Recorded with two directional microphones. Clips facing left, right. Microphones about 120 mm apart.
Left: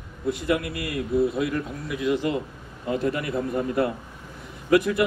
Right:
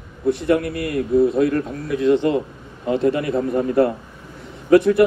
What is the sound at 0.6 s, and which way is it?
Speech, 55° right (ahead or behind).